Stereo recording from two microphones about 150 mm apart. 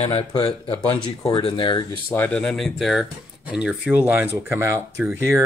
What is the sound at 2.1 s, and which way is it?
Speech, 10° left (ahead or behind).